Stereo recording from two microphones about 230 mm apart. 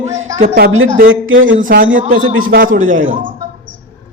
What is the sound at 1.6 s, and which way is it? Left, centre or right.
A man's voice, right.